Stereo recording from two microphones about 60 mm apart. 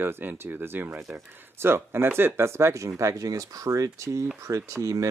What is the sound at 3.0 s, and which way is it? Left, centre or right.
Speech, right.